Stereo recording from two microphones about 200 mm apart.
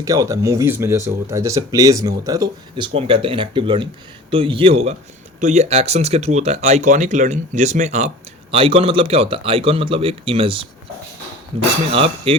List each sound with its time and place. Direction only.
0.0 s a man's voice: 15° right (ahead or behind)
11.9 s a man's voice: 30° right (ahead or behind)